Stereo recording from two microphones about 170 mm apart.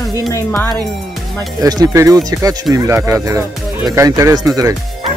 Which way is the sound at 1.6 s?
20° right (ahead or behind).